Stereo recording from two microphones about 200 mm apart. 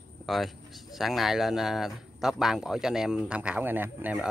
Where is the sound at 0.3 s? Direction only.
Centre (ahead or behind).